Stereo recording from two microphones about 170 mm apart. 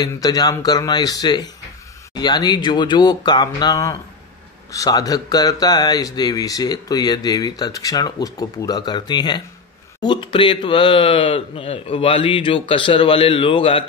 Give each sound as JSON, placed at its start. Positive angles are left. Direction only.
{"t": 0.0, "sound": "speech", "side_deg": 20}